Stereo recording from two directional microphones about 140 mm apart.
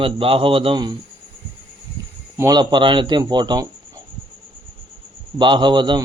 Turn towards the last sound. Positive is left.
turn(degrees=-35)  # may be behind; listen again after turning